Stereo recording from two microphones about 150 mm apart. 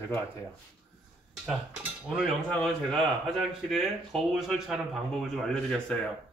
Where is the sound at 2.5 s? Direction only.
5° left (ahead or behind).